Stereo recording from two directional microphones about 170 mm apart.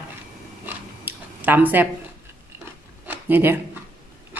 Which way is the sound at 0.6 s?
10° right (ahead or behind).